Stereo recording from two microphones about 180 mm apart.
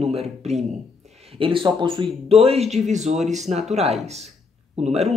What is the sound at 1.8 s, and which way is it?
A man's voice, 25° right (ahead or behind).